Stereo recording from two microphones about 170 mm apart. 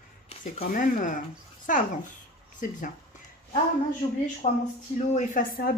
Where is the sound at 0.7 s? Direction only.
50° left (ahead or behind).